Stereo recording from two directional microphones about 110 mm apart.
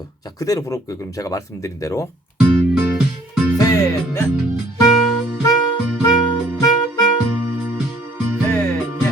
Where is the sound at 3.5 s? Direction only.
35° left (ahead or behind).